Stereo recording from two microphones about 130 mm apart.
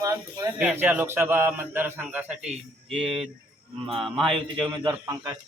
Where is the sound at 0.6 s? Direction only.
10° right (ahead or behind).